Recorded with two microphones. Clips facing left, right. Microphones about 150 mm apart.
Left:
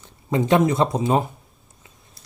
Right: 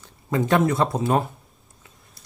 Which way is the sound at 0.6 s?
20° left (ahead or behind).